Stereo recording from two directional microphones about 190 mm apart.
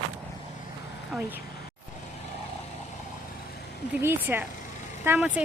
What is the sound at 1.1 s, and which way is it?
Speech, centre (ahead or behind).